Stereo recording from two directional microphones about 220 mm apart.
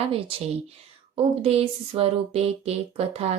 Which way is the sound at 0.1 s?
25° right (ahead or behind).